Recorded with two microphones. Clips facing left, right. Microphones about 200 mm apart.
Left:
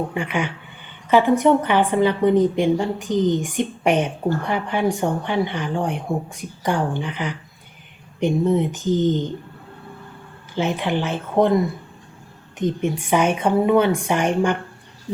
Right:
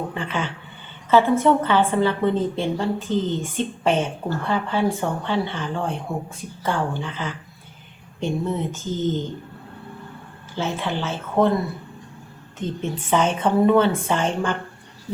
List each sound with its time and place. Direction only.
0.1 s a woman's voice: 15° left (ahead or behind)
10.5 s a woman's voice: 15° left (ahead or behind)
12.5 s a woman's voice: 15° left (ahead or behind)